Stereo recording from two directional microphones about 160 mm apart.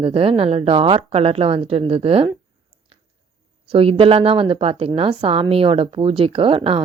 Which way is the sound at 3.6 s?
35° right (ahead or behind).